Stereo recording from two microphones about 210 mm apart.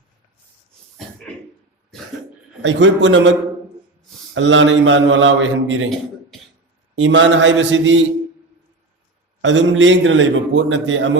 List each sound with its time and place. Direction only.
2.6 s a man's voice: 60° right (ahead or behind)
4.4 s a man's voice: 60° right (ahead or behind)
6.9 s a man's voice: 60° right (ahead or behind)
9.4 s a man's voice: 60° right (ahead or behind)